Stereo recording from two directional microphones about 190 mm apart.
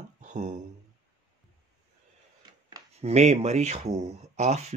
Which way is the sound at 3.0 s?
35° right (ahead or behind).